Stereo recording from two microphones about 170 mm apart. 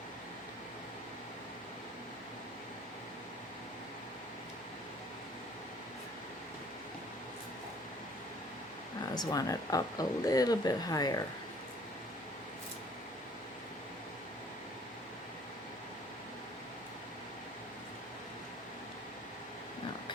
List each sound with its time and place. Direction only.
9.1 s speech: 20° left (ahead or behind)